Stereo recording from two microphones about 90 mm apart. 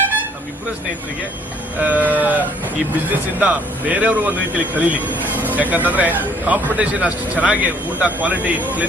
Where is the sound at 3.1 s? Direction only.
15° right (ahead or behind).